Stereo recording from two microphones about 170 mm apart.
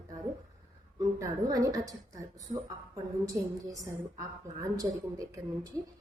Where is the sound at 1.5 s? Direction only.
20° right (ahead or behind).